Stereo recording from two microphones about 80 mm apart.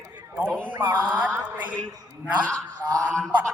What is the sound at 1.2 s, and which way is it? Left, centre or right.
Mantra, right.